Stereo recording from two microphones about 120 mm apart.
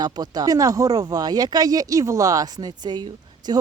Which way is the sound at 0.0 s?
35° right (ahead or behind).